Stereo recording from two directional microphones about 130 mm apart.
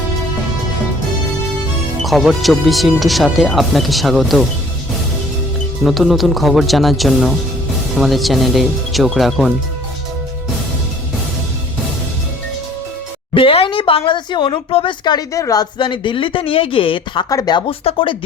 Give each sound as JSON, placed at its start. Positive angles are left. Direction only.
{"t": 2.0, "sound": "speech", "side_deg": 0}
{"t": 5.8, "sound": "speech", "side_deg": 0}
{"t": 13.3, "sound": "a sound", "side_deg": 45}
{"t": 15.8, "sound": "speech", "side_deg": 40}
{"t": 17.2, "sound": "speech", "side_deg": 30}
{"t": 17.7, "sound": "speech", "side_deg": 45}